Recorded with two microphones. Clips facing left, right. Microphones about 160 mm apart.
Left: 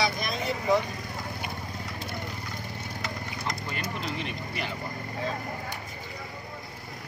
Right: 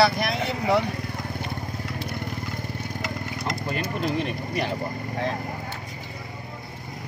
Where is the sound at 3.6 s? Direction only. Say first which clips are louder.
Right 7 dB; 55° right (ahead or behind).